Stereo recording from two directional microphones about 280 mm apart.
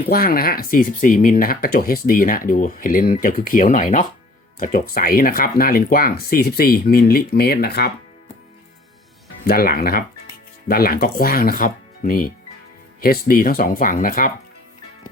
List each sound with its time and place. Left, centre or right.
0.1 s speech: left
9.4 s speech: left